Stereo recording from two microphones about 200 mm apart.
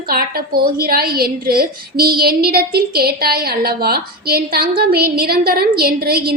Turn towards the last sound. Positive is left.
turn(degrees=-50)  # may be behind; listen again after turning